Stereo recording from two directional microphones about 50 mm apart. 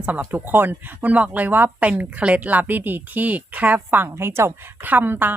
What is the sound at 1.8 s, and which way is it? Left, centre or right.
A woman's voice, right.